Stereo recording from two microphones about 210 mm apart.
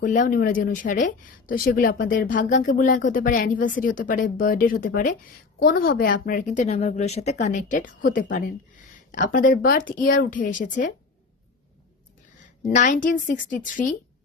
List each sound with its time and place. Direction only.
0.0 s speech: 40° left (ahead or behind)
12.7 s speech: 35° left (ahead or behind)